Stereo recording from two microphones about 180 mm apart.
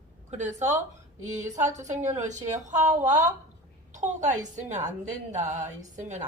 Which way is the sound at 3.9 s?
40° right (ahead or behind).